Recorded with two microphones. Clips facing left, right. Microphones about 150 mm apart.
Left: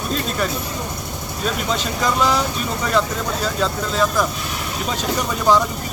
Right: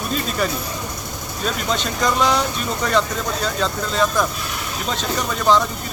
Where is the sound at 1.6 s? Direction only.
5° left (ahead or behind).